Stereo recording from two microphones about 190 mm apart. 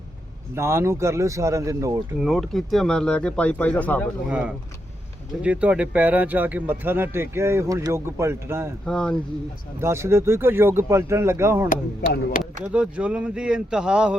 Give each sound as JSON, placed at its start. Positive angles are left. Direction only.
{"t": 0.5, "sound": "speech", "side_deg": -15}
{"t": 2.2, "sound": "speech", "side_deg": 0}
{"t": 4.3, "sound": "speech", "side_deg": -5}
{"t": 8.9, "sound": "speech", "side_deg": 5}
{"t": 9.8, "sound": "speech", "side_deg": -15}